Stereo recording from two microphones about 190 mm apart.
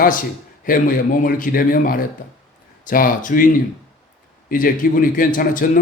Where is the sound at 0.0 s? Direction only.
45° left (ahead or behind).